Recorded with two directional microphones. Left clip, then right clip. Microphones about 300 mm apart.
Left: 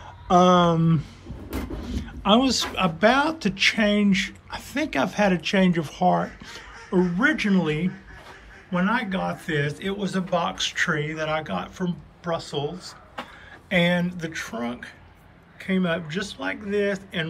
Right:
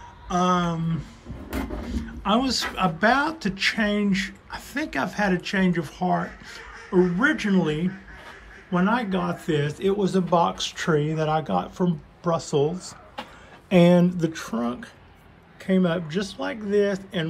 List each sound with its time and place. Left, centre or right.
0.3 s a man's voice: centre
13.7 s a man's voice: centre